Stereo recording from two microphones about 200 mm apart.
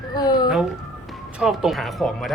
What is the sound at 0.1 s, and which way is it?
Speech, 20° left (ahead or behind).